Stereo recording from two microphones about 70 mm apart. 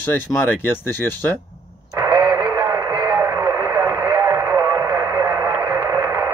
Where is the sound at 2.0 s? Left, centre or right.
Right.